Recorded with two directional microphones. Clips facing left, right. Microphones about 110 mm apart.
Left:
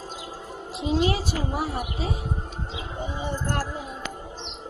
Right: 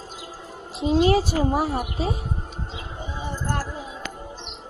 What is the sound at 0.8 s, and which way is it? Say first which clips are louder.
Speech: right 4 dB; 25° right (ahead or behind).